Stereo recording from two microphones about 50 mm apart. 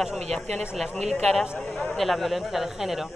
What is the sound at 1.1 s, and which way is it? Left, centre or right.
Speech, left.